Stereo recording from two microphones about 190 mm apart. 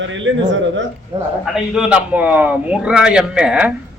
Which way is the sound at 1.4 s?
5° right (ahead or behind).